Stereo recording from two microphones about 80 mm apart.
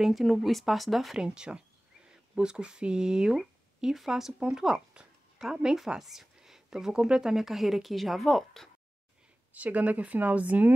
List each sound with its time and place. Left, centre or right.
0.0 s speech: centre
9.5 s speech: centre